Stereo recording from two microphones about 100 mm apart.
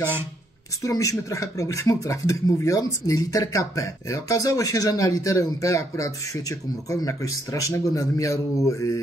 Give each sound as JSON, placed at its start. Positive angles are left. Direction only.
{"t": 0.8, "sound": "speech", "side_deg": 30}